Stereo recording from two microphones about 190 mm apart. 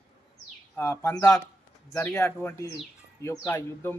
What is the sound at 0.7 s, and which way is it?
A man's voice, 15° left (ahead or behind).